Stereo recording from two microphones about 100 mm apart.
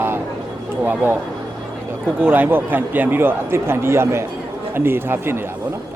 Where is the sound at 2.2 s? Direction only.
20° right (ahead or behind).